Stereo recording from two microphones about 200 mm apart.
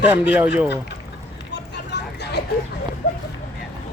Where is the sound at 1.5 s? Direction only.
60° left (ahead or behind).